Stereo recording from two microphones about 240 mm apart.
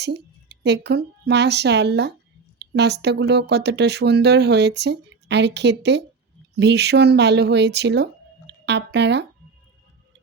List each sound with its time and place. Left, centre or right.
0.6 s speech: right